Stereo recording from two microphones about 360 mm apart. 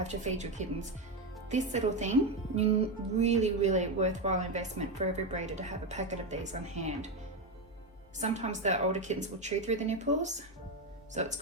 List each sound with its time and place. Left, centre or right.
0.0 s a woman's voice: centre
3.2 s a woman's voice: centre
8.2 s a woman's voice: centre